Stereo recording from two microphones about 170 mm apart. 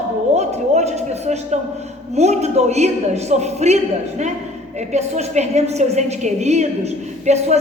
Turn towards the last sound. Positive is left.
turn(degrees=-40)  # may be behind; listen again after turning